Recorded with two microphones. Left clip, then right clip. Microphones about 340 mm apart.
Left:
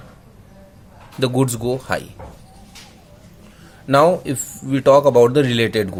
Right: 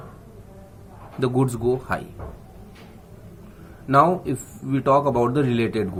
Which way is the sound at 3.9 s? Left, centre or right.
Left.